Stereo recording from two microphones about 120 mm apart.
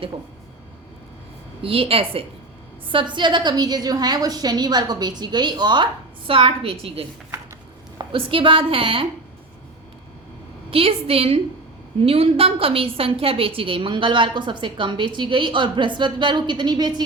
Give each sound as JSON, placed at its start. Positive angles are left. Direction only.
{"t": 1.6, "sound": "a woman's voice", "side_deg": -50}
{"t": 2.9, "sound": "a woman's voice", "side_deg": -40}
{"t": 10.7, "sound": "a woman's voice", "side_deg": -50}